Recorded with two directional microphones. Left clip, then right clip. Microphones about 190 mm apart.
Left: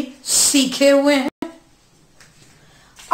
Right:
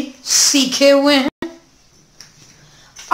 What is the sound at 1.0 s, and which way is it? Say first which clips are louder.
Speech: right 2 dB; 5° right (ahead or behind).